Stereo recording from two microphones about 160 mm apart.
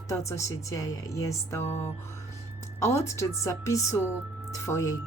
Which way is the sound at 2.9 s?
20° left (ahead or behind).